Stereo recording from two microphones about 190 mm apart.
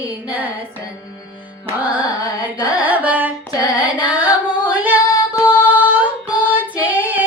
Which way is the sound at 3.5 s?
20° left (ahead or behind).